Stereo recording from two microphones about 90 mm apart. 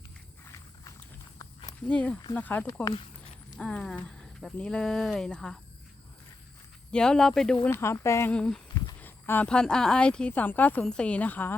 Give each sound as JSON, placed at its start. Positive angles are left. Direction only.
{"t": 1.9, "sound": "speech", "side_deg": 15}
{"t": 6.9, "sound": "speech", "side_deg": 10}
{"t": 7.7, "sound": "speech", "side_deg": 30}
{"t": 8.3, "sound": "speech", "side_deg": 10}
{"t": 9.0, "sound": "a sound", "side_deg": 20}
{"t": 9.5, "sound": "speech", "side_deg": 10}